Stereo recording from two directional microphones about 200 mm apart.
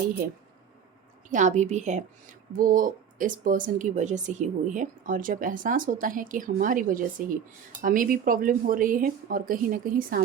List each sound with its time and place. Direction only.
1.3 s speech: 40° right (ahead or behind)